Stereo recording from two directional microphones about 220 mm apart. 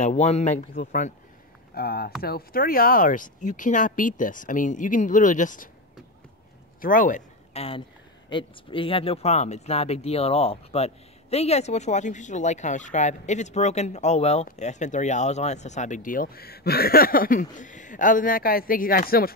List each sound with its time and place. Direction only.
0.0 s speech: 30° left (ahead or behind)
1.8 s speech: 45° left (ahead or behind)
6.8 s speech: 40° left (ahead or behind)